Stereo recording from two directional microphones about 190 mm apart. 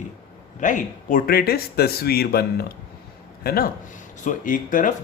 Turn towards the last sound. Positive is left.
turn(degrees=45)  # may be behind; listen again after turning